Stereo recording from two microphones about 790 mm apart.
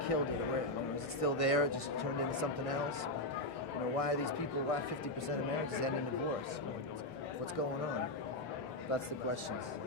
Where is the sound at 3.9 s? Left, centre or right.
Left.